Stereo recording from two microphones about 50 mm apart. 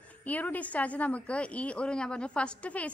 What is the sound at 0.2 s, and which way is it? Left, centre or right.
A woman's voice, left.